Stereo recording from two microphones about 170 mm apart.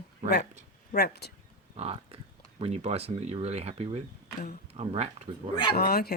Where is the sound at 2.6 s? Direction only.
35° right (ahead or behind).